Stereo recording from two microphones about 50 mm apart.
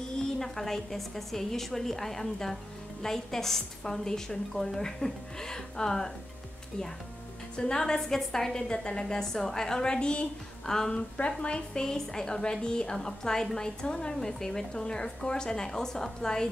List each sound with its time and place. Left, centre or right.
0.4 s a woman's voice: centre
7.5 s a woman's voice: centre